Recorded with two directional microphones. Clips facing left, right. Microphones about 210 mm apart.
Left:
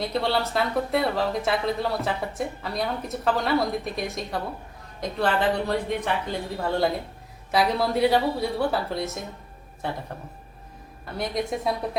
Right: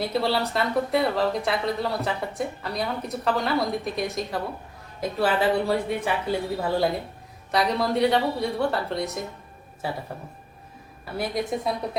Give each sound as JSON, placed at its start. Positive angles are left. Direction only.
{"t": 0.0, "sound": "speech", "side_deg": 0}
{"t": 11.0, "sound": "speech", "side_deg": 0}